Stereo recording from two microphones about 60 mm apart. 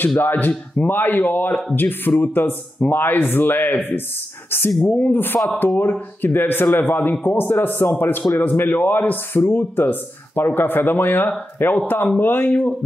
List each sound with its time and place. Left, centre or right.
0.2 s a man's voice: left